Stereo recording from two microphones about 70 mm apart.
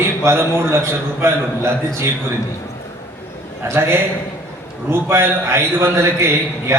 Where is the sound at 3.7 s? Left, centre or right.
Right.